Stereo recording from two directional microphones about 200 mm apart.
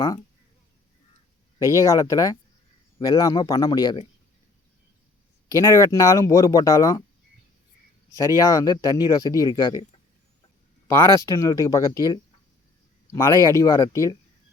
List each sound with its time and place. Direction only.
1.7 s speech: 15° left (ahead or behind)
5.5 s speech: 15° left (ahead or behind)
8.4 s speech: 15° left (ahead or behind)
10.8 s speech: 10° left (ahead or behind)